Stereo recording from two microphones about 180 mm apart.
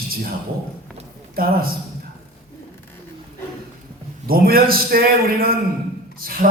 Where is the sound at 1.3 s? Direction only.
55° right (ahead or behind).